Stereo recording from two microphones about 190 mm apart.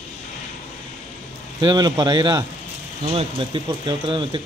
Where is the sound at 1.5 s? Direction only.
20° right (ahead or behind).